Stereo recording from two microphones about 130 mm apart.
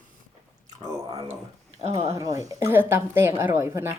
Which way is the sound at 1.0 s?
40° right (ahead or behind).